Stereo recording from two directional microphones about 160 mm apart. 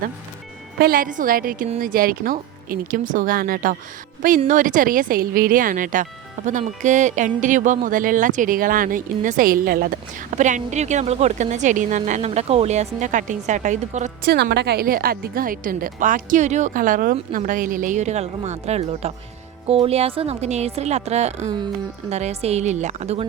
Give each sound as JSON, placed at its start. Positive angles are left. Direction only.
{"t": 0.8, "sound": "a woman's voice", "side_deg": -65}
{"t": 14.3, "sound": "a woman's voice", "side_deg": -85}